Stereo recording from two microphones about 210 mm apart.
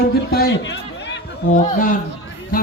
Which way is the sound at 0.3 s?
50° left (ahead or behind).